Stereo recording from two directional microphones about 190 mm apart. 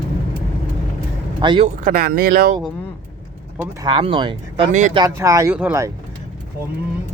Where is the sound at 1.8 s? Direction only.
45° right (ahead or behind).